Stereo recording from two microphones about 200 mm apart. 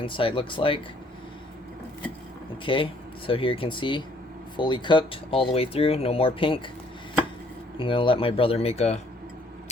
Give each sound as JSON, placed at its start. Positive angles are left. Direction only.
{"t": 0.0, "sound": "speech", "side_deg": 25}
{"t": 2.6, "sound": "speech", "side_deg": 25}
{"t": 7.8, "sound": "speech", "side_deg": 25}